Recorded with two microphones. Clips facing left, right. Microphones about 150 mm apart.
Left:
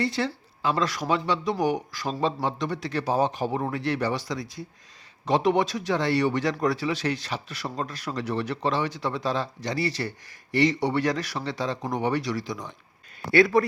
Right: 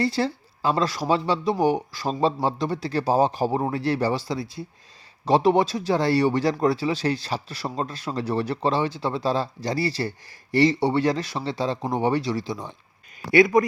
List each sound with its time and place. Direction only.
0.0 s speech: 35° right (ahead or behind)
13.3 s a man's voice: 15° right (ahead or behind)